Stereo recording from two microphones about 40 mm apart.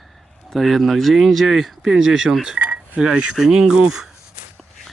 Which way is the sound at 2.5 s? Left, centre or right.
Right.